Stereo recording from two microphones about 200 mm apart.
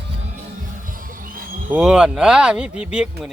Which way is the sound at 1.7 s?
5° right (ahead or behind).